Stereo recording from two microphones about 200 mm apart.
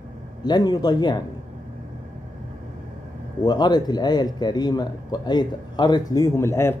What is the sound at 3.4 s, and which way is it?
A man's voice, 20° left (ahead or behind).